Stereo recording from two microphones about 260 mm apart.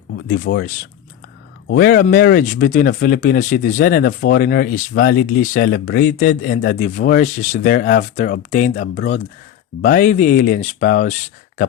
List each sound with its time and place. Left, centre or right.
0.3 s speech: left